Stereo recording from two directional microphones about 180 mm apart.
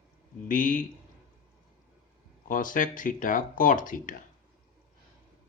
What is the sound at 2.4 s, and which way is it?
Speech, 50° left (ahead or behind).